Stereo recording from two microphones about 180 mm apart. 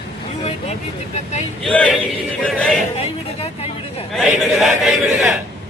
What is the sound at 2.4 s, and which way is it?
Chant, 5° left (ahead or behind).